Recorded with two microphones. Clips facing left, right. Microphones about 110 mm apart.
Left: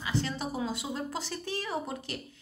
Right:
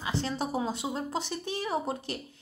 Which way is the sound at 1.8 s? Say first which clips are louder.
Right 5 dB; 30° right (ahead or behind).